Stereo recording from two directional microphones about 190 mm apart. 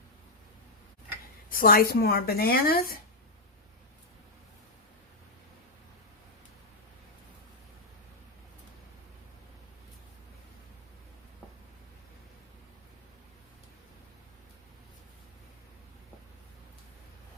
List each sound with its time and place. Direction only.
1.5 s speech: 50° left (ahead or behind)